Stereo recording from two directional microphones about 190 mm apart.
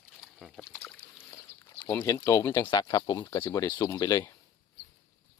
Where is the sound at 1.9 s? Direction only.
15° left (ahead or behind).